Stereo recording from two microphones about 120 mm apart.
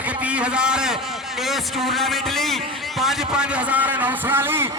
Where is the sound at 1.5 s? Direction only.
Centre (ahead or behind).